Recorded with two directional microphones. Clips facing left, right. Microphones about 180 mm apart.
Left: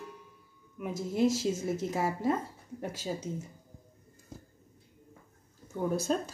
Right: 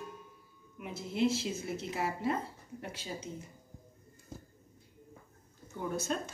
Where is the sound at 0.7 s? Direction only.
45° left (ahead or behind).